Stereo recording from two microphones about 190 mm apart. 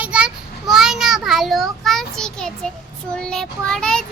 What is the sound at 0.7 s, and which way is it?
A child's voice, centre (ahead or behind).